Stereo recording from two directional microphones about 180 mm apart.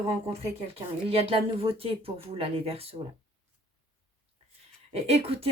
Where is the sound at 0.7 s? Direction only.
30° right (ahead or behind).